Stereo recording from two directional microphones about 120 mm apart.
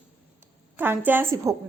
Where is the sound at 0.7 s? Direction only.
15° right (ahead or behind).